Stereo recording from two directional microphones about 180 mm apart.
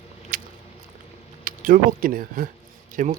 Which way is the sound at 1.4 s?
50° right (ahead or behind).